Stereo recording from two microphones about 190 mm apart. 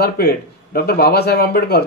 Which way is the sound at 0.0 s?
55° left (ahead or behind).